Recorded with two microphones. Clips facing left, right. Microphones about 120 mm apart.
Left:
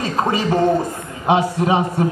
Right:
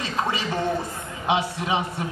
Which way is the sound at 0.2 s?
45° left (ahead or behind).